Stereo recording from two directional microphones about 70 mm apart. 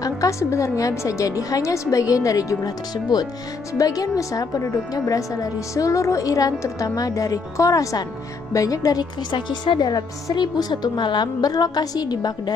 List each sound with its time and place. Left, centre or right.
0.0 s a woman's voice: left
3.7 s a woman's voice: left
9.5 s a woman's voice: left
10.3 s a woman's voice: left